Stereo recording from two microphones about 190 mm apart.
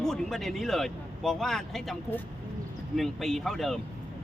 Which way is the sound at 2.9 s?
Centre (ahead or behind).